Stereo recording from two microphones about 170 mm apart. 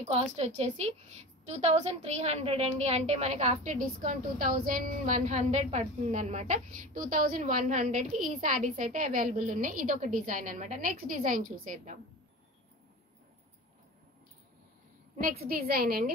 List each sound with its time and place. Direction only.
0.1 s a woman's voice: 40° right (ahead or behind)
15.5 s a woman's voice: 65° right (ahead or behind)